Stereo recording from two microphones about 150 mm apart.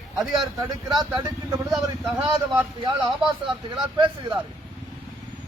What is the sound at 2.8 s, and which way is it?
Speech, 35° right (ahead or behind).